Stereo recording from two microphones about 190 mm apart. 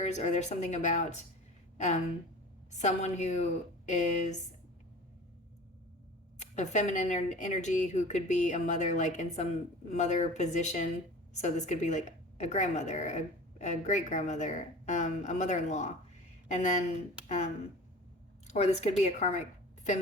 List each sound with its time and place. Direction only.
0.0 s a woman's voice: 35° left (ahead or behind)
2.7 s a woman's voice: 35° left (ahead or behind)
6.4 s a woman's voice: 40° left (ahead or behind)